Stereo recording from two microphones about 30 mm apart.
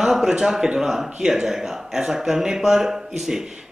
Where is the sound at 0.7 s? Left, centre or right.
Centre.